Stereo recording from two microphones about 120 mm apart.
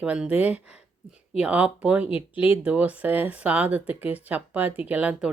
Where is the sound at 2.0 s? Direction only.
50° left (ahead or behind).